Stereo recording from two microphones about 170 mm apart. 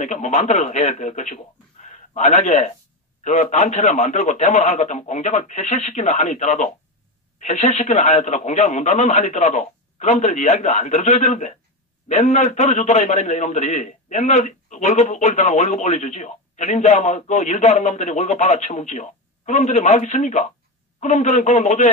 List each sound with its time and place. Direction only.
0.0 s a man's voice: 45° left (ahead or behind)